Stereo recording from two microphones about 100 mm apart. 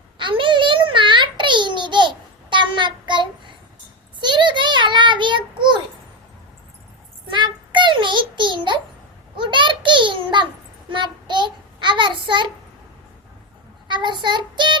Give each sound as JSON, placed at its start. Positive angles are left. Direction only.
{"t": 0.2, "sound": "babbling", "side_deg": -55}
{"t": 4.2, "sound": "a sound", "side_deg": -50}
{"t": 7.3, "sound": "child singing", "side_deg": -50}
{"t": 9.4, "sound": "a sound", "side_deg": -50}
{"t": 10.8, "sound": "child singing", "side_deg": -50}
{"t": 13.8, "sound": "child singing", "side_deg": -50}